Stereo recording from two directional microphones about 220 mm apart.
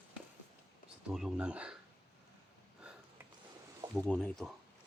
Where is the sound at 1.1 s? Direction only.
5° right (ahead or behind).